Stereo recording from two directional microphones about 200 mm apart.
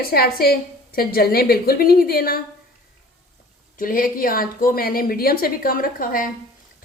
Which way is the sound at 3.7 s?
45° left (ahead or behind).